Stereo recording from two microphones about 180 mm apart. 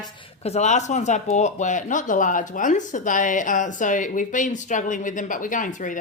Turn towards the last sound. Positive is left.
turn(degrees=45)  # may be behind; listen again after turning